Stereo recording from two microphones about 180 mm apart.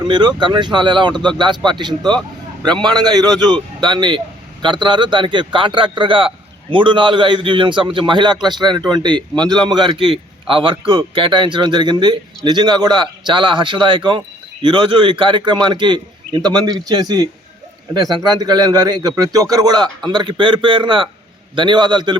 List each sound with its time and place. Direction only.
0.0 s a man's voice: 25° right (ahead or behind)